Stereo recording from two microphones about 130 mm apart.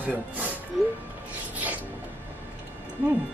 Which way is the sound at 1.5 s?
10° right (ahead or behind).